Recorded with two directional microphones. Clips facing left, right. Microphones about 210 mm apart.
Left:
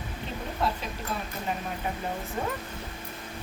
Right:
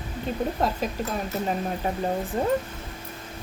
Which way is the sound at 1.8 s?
40° right (ahead or behind).